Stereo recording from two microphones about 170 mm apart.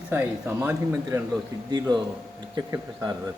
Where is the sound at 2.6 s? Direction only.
20° right (ahead or behind).